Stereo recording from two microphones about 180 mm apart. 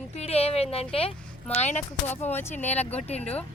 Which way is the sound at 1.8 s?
10° left (ahead or behind).